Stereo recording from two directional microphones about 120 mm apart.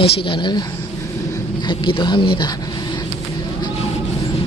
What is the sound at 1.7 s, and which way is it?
Speech, 45° left (ahead or behind).